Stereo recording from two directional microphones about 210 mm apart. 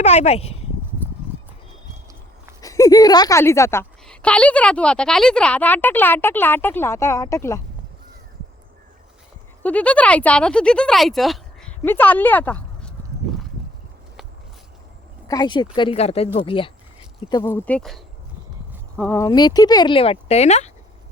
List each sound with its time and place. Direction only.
0.0 s speech: 30° left (ahead or behind)
2.6 s a woman's voice: 15° left (ahead or behind)
9.6 s speech: 5° left (ahead or behind)
15.3 s speech: 20° left (ahead or behind)
17.5 s speech: 5° left (ahead or behind); by 20.7 s 30° left (ahead or behind)